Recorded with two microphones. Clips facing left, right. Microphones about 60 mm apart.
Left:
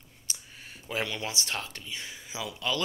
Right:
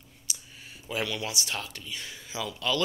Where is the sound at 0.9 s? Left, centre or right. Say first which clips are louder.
Right 1 dB; left.